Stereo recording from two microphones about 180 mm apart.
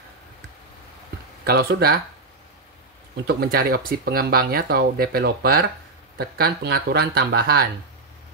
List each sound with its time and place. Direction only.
1.4 s speech: 60° right (ahead or behind)
3.3 s speech: 55° right (ahead or behind)